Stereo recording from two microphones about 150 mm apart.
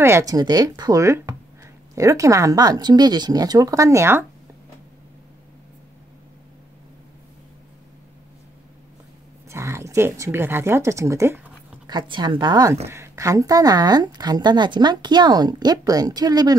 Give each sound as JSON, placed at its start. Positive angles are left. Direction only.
{"t": 0.0, "sound": "a woman's voice", "side_deg": -20}
{"t": 9.5, "sound": "speech", "side_deg": -20}
{"t": 11.9, "sound": "a woman's voice", "side_deg": -30}